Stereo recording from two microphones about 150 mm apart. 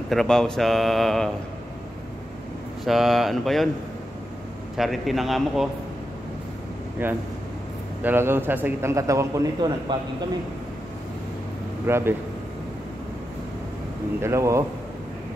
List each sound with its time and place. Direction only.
0.1 s speech: 5° left (ahead or behind)
2.8 s speech: centre (ahead or behind)
4.7 s speech: centre (ahead or behind)
7.0 s a man's voice: 15° right (ahead or behind)
11.8 s speech: 15° right (ahead or behind)
14.2 s a man's voice: 20° right (ahead or behind)